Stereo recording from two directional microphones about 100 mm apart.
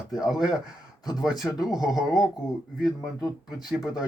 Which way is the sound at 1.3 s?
5° right (ahead or behind).